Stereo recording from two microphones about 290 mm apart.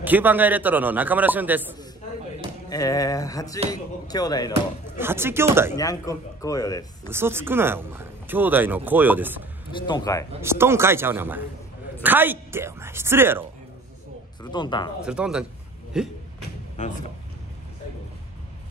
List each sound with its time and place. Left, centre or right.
0.0 s a man's voice: centre
2.7 s speech: centre
4.9 s speech: centre
5.8 s speech: centre
7.1 s speech: centre
9.7 s speech: centre
10.4 s speech: centre
14.4 s speech: centre
15.0 s a man's voice: centre